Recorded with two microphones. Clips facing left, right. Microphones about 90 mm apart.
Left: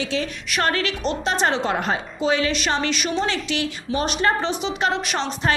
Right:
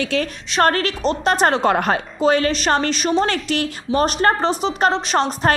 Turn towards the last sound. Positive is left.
turn(degrees=-45)  # may be behind; listen again after turning